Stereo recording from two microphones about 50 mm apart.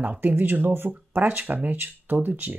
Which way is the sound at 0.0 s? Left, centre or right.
Right.